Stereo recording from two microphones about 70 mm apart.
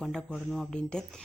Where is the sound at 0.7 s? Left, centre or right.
Centre.